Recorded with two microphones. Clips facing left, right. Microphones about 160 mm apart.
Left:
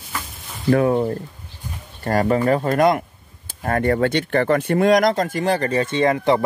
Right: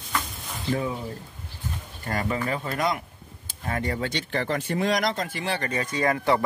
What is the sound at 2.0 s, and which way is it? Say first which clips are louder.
Speech: left 10 dB; 45° left (ahead or behind).